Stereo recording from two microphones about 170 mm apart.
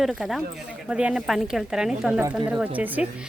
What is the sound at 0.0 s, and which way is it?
A woman's voice, centre (ahead or behind).